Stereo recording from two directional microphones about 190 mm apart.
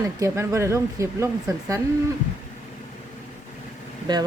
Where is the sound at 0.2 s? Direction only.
15° right (ahead or behind).